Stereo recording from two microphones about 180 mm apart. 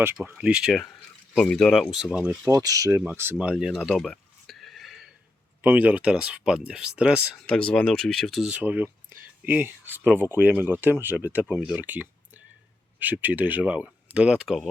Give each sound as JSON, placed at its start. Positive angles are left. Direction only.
{"t": 0.0, "sound": "speech", "side_deg": -10}
{"t": 2.5, "sound": "speech", "side_deg": -20}
{"t": 3.0, "sound": "a sound", "side_deg": -10}
{"t": 5.6, "sound": "speech", "side_deg": -10}